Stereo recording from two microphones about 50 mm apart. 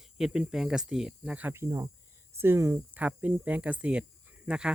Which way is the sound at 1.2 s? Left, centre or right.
Right.